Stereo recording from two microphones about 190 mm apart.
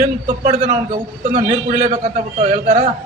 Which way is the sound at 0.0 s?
40° right (ahead or behind).